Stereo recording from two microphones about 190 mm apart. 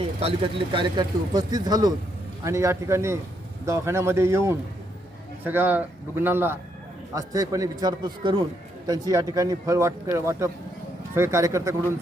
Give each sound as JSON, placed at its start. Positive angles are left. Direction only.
{"t": 0.2, "sound": "speech", "side_deg": -30}